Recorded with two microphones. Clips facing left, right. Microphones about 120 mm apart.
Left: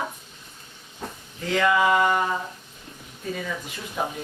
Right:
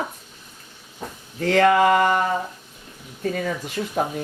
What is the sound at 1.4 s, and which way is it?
Speech, 55° right (ahead or behind).